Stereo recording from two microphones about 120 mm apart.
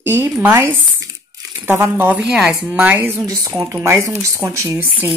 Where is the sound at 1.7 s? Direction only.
20° right (ahead or behind).